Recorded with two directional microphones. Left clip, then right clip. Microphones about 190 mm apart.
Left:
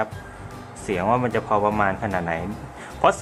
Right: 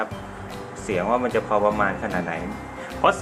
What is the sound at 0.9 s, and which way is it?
Speech, 30° left (ahead or behind).